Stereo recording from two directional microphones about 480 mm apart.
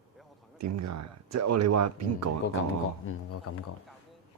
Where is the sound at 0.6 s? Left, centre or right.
Right.